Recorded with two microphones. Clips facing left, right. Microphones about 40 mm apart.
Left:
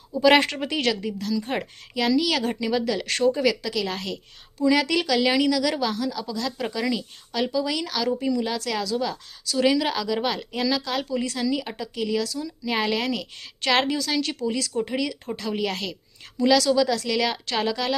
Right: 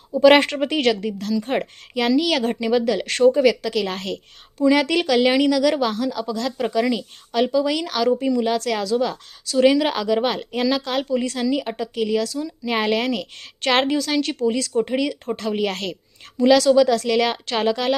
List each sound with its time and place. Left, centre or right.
0.2 s speech: right